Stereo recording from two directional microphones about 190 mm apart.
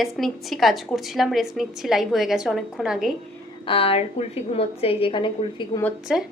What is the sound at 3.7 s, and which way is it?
A woman's voice, 30° left (ahead or behind).